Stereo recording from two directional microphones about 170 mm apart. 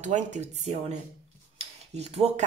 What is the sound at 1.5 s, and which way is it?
Mechanisms, 40° right (ahead or behind).